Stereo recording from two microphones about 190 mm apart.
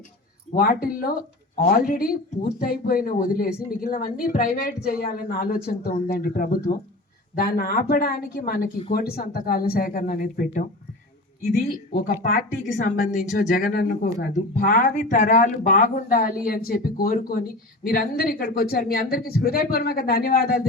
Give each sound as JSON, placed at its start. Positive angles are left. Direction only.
{"t": 0.5, "sound": "speech", "side_deg": 50}
{"t": 2.6, "sound": "speech", "side_deg": 50}
{"t": 11.9, "sound": "speech", "side_deg": 45}